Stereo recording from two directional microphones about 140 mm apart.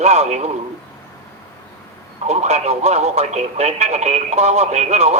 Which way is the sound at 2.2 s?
50° right (ahead or behind).